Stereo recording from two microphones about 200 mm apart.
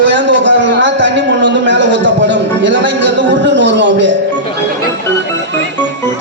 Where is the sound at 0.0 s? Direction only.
60° right (ahead or behind).